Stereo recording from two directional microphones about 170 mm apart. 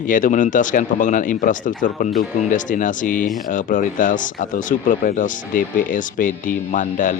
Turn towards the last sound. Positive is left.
turn(degrees=50)  # may be behind; listen again after turning